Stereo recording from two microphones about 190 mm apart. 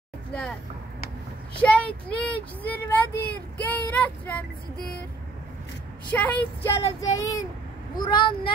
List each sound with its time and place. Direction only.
0.3 s speech: 5° left (ahead or behind)
1.6 s speech: 5° left (ahead or behind)
6.0 s speech: 10° left (ahead or behind); by 8.5 s 25° left (ahead or behind)